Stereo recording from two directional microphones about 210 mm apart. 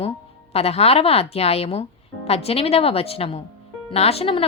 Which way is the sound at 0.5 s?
30° left (ahead or behind).